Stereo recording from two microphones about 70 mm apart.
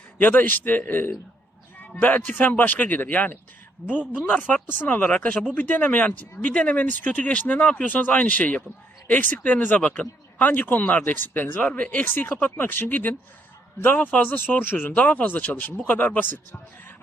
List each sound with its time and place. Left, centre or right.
0.2 s speech: left
3.8 s speech: centre
4.2 s speech: left